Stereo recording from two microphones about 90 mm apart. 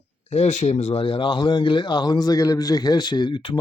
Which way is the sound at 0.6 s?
80° left.